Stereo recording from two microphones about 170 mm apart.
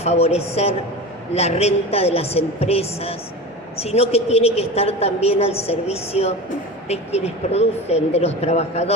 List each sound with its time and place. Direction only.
0.0 s a woman's voice: 40° left (ahead or behind)